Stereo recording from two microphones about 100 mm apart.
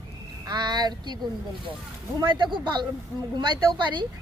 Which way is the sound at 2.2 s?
55° right (ahead or behind).